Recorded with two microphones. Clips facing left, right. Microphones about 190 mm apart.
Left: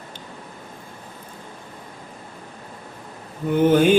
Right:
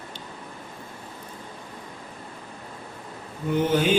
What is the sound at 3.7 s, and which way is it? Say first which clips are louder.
Mantra: left 8 dB; 50° left (ahead or behind).